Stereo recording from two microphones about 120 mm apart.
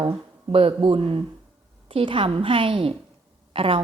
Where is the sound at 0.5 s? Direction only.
50° right (ahead or behind).